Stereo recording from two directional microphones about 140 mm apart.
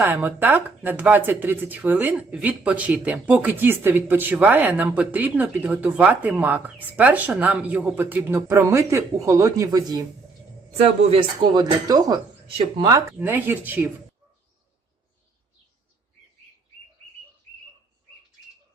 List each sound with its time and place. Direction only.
0.0 s speech: 15° right (ahead or behind)
11.4 s speech: 30° right (ahead or behind)
13.1 s speech: 15° right (ahead or behind)